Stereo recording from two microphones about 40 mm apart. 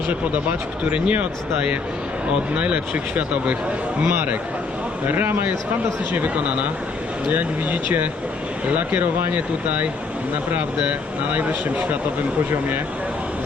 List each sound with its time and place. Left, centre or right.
0.9 s speech: right
2.6 s speech: right
4.1 s speech: right
5.0 s a man's voice: right
6.1 s speech: right
11.3 s speech: right